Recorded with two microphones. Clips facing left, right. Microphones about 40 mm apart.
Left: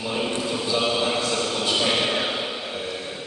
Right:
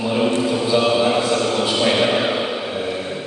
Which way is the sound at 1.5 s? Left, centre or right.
Right.